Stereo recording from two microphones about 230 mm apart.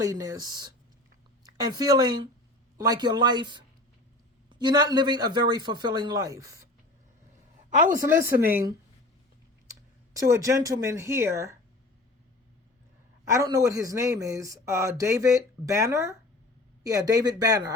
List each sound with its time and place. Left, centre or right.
0.0 s a man's voice: centre
8.1 s speech: centre
10.2 s speech: centre
13.2 s speech: centre